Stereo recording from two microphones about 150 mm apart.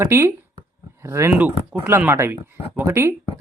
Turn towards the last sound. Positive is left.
turn(degrees=-15)  # may be behind; listen again after turning